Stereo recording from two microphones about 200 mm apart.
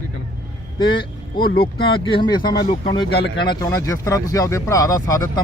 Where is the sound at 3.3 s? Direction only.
20° left (ahead or behind).